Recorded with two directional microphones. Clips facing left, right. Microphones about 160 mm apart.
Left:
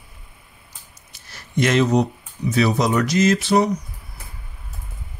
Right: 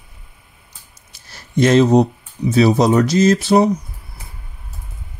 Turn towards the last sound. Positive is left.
turn(degrees=-35)  # may be behind; listen again after turning